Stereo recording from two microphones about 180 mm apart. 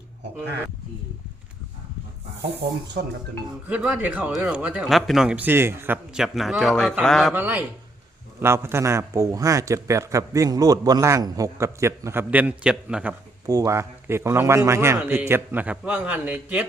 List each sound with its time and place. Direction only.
3.0 s speech: 70° right (ahead or behind)
3.7 s speech: 5° right (ahead or behind)
7.3 s a man's voice: 10° right (ahead or behind)
13.5 s a man's voice: 15° right (ahead or behind)